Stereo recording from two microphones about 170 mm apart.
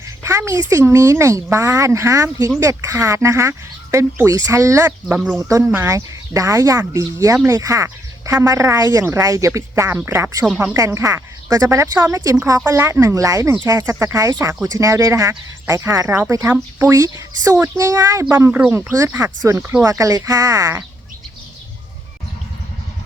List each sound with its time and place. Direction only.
0.2 s a sound: 15° right (ahead or behind)
0.7 s speech: 15° right (ahead or behind)
5.4 s speech: 20° right (ahead or behind)
10.4 s speech: 5° right (ahead or behind)
10.8 s speech: 20° right (ahead or behind)